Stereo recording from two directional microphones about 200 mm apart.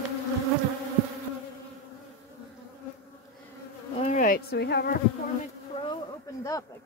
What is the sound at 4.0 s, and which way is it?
Bee, 40° left (ahead or behind).